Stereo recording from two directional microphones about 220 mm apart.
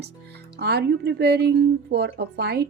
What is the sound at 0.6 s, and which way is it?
Speech, 45° right (ahead or behind).